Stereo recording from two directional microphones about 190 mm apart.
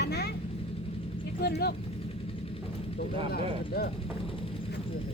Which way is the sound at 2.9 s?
55° left (ahead or behind).